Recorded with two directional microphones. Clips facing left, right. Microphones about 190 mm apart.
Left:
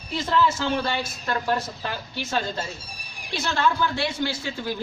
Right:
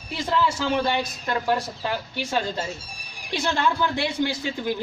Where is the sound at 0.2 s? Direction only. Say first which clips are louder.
Left 1 dB; 10° right (ahead or behind).